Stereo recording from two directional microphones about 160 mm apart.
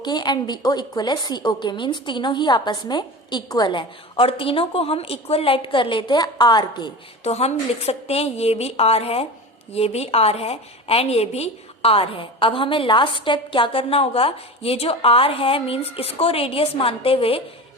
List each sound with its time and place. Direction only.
0.0 s a woman's voice: 25° left (ahead or behind)
7.3 s a woman's voice: 40° left (ahead or behind)